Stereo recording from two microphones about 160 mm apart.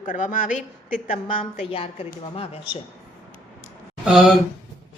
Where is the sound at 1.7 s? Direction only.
35° left (ahead or behind).